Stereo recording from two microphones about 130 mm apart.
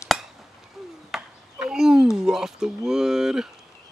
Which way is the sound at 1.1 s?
5° right (ahead or behind).